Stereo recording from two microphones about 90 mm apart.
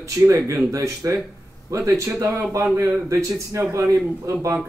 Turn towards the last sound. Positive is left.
turn(degrees=-35)  # may be behind; listen again after turning